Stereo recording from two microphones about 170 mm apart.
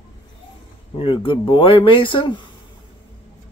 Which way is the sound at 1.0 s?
30° left (ahead or behind).